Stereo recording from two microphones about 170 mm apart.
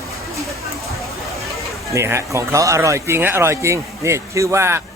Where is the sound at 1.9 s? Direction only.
15° right (ahead or behind).